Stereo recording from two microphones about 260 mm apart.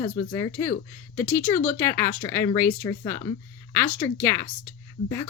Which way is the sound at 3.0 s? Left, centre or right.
Centre.